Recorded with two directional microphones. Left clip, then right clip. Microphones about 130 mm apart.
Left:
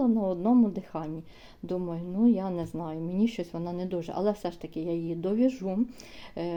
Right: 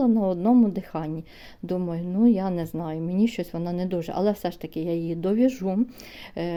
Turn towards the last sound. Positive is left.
turn(degrees=-45)  # may be behind; listen again after turning